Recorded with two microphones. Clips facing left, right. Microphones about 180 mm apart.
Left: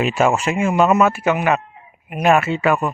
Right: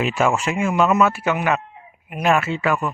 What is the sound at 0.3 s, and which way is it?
Speech, 20° left (ahead or behind).